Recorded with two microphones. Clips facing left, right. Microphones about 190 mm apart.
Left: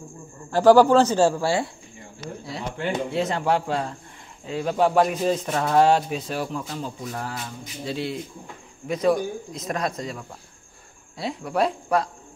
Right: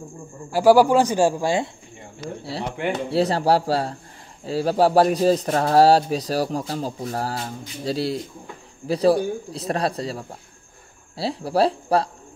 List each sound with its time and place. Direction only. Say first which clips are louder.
0.5 s a man's voice: even; 10° right (ahead or behind)
3.1 s speech: right 6 dB; 35° right (ahead or behind)